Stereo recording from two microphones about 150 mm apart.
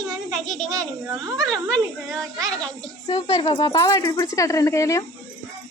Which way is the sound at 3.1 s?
35° left (ahead or behind).